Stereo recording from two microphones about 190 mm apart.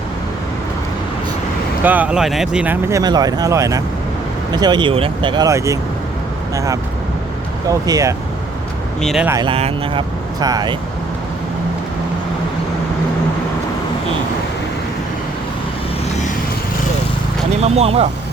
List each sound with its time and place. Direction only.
1.8 s speech: 10° right (ahead or behind)
2.9 s speech: 20° right (ahead or behind)
7.7 s speech: 15° right (ahead or behind)
9.0 s speech: centre (ahead or behind)
9.2 s speech: 15° right (ahead or behind)
9.5 s speech: 30° right (ahead or behind)
17.6 s speech: 35° right (ahead or behind)